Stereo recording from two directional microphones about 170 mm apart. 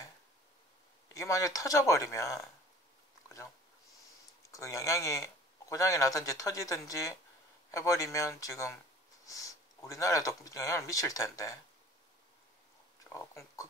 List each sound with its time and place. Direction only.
1.1 s speech: 20° left (ahead or behind)
4.5 s speech: 20° left (ahead or behind)
13.1 s a sound: 15° left (ahead or behind)